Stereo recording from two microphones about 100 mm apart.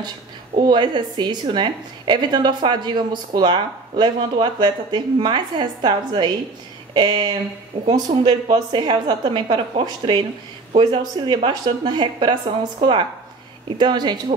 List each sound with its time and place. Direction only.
0.6 s a woman's voice: 50° right (ahead or behind)
13.7 s a woman's voice: 50° right (ahead or behind)